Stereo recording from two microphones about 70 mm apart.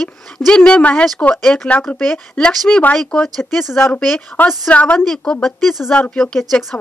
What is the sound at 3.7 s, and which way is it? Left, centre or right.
Speech, left.